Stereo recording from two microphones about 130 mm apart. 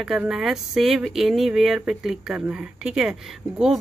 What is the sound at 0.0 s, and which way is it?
Speech, 5° right (ahead or behind).